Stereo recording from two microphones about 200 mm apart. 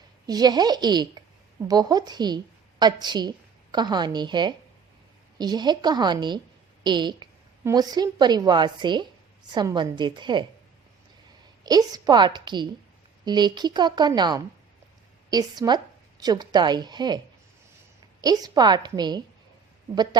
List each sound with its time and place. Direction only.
0.3 s a woman's voice: 20° right (ahead or behind)
11.6 s a woman's voice: 20° right (ahead or behind)
18.2 s a woman's voice: 20° right (ahead or behind)